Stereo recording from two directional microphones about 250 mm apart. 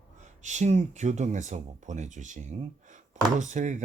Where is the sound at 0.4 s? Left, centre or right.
Right.